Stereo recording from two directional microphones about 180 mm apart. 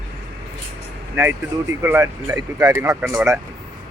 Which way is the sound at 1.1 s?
15° right (ahead or behind).